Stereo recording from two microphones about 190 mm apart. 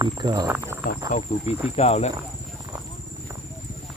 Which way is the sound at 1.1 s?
35° left (ahead or behind).